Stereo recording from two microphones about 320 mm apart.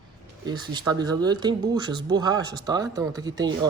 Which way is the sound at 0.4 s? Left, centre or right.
Centre.